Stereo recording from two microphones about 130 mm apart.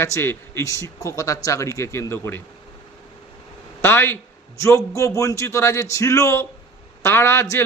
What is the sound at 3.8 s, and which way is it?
A man's voice, 15° left (ahead or behind).